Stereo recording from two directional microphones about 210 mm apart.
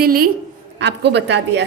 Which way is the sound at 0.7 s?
55° right (ahead or behind).